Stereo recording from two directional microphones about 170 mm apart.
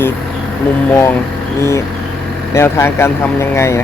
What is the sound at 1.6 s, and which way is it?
Speech, 15° left (ahead or behind).